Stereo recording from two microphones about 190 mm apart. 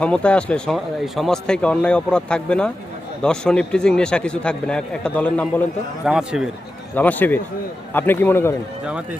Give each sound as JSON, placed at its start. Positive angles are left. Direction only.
{"t": 0.0, "sound": "speech", "side_deg": 5}
{"t": 6.1, "sound": "speech", "side_deg": -5}
{"t": 6.9, "sound": "a man's voice", "side_deg": 10}